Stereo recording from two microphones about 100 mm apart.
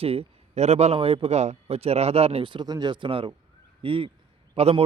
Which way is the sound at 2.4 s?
45° right (ahead or behind).